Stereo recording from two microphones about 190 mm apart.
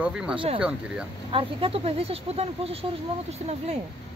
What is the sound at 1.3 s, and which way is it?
Speech, 30° right (ahead or behind).